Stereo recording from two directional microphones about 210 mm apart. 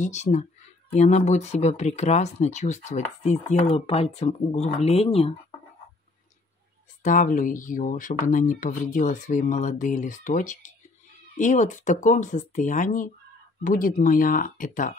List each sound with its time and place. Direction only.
0.0 s speech: 35° left (ahead or behind)
7.0 s speech: 40° left (ahead or behind)